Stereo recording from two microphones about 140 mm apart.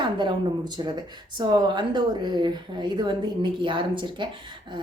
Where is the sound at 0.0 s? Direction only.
35° right (ahead or behind).